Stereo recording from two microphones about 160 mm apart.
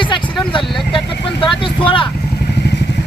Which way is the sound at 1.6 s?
35° left (ahead or behind).